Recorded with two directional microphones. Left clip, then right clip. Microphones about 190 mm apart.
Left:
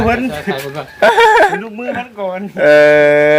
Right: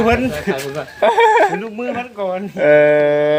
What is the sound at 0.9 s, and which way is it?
Speech, 30° left (ahead or behind).